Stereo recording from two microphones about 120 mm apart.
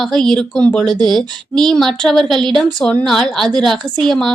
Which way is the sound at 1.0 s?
5° left (ahead or behind).